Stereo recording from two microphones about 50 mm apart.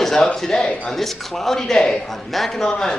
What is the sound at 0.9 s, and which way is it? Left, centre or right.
Speech, centre.